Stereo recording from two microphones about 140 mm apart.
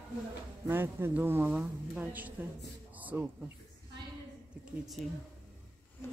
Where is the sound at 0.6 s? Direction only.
15° right (ahead or behind).